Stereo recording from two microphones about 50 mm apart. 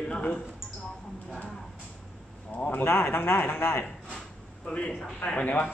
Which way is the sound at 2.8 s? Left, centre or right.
Left.